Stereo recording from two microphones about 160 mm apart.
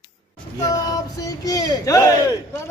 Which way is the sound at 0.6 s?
20° left (ahead or behind).